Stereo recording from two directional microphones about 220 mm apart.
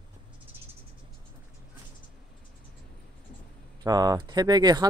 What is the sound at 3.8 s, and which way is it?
Speech, 15° right (ahead or behind).